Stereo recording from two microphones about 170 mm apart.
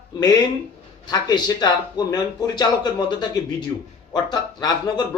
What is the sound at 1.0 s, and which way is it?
Speech, 25° left (ahead or behind).